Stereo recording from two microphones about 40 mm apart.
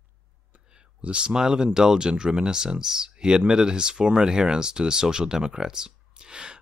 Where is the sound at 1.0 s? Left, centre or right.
Right.